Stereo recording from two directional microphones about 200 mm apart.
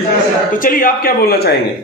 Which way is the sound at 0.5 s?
45° left (ahead or behind).